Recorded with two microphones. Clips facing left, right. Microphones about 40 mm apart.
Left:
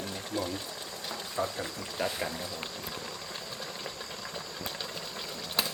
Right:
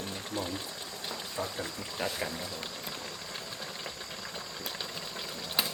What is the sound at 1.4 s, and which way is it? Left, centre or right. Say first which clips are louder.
Speech: left 4 dB; centre.